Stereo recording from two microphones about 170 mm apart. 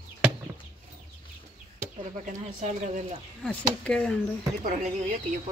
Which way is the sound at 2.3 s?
45° right (ahead or behind).